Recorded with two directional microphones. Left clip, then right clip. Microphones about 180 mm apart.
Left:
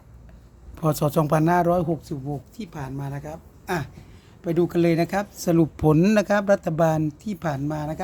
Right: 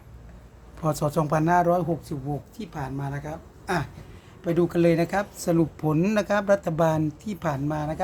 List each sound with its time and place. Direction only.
0.8 s speech: 45° left (ahead or behind)
4.4 s speech: 30° left (ahead or behind)